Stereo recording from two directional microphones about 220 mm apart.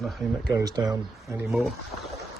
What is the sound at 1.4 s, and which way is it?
Speech, centre (ahead or behind).